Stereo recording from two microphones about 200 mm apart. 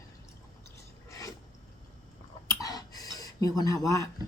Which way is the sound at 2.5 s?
20° left (ahead or behind).